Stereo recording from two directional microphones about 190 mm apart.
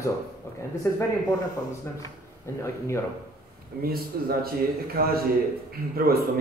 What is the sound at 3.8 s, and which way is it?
A man's voice, 50° right (ahead or behind).